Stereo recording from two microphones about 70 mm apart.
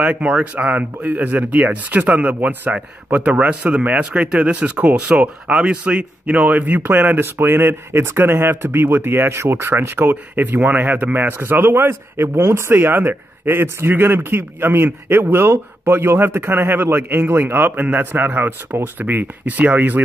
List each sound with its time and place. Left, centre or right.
0.0 s a man's voice: centre